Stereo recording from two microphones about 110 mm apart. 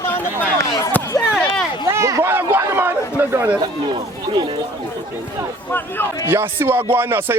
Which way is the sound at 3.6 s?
45° right (ahead or behind).